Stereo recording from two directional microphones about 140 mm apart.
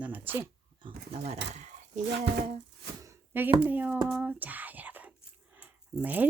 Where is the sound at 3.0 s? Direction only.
15° right (ahead or behind).